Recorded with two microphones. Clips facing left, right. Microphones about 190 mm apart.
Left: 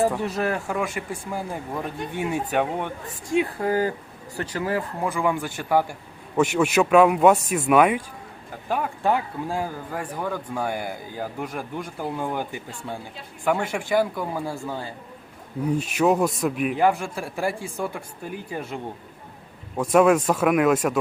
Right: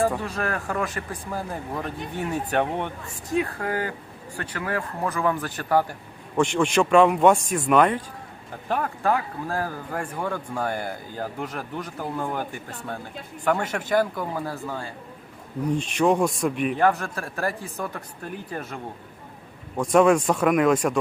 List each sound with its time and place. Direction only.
0.2 s a man's voice: 20° left (ahead or behind)
3.4 s speech: 25° left (ahead or behind)
4.9 s a man's voice: 15° left (ahead or behind)
9.0 s a man's voice: 15° left (ahead or behind)